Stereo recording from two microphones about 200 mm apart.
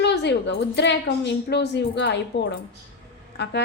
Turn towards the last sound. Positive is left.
turn(degrees=60)  # may be behind; listen again after turning